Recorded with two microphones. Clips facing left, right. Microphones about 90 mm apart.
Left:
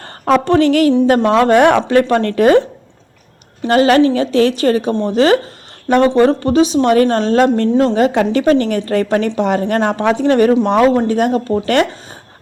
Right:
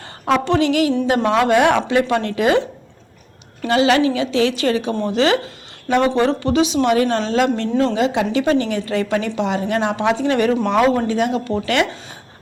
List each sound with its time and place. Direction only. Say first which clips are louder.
0.0 s a woman's voice: left 5 dB; 50° left (ahead or behind)
3.7 s speech: left 5 dB; 45° left (ahead or behind)
8.0 s speech: left 5 dB; 55° left (ahead or behind); by 11.0 s 30° left (ahead or behind)
11.0 s speech: left 4 dB; 45° left (ahead or behind)